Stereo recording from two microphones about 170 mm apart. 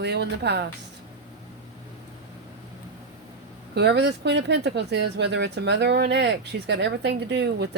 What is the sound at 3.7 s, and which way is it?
Speech, 80° right.